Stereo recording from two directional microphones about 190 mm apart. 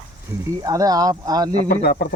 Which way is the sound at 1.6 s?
50° left (ahead or behind).